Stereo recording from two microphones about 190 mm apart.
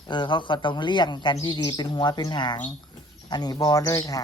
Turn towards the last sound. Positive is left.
turn(degrees=15)  # may be behind; listen again after turning